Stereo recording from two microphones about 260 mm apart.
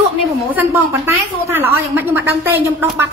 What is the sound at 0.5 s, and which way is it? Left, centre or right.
A woman's voice, centre.